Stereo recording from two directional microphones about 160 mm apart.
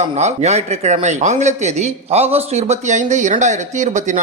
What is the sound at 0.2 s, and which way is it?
Speech, 45° right (ahead or behind).